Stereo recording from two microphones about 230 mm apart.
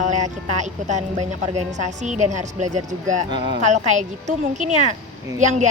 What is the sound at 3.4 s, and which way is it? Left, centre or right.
Speech, right.